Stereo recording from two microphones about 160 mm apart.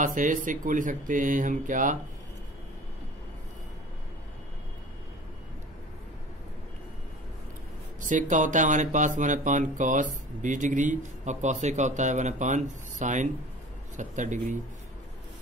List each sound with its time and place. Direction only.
0.0 s speech: 55° right (ahead or behind)
8.0 s speech: 50° right (ahead or behind)